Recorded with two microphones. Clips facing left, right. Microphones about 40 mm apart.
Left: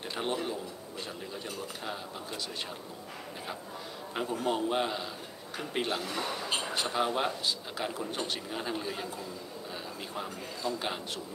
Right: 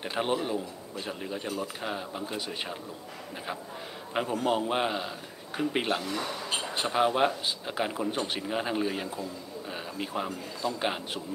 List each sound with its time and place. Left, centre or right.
0.0 s speech: right
4.1 s a man's voice: right
6.0 s speech: centre
6.7 s speech: centre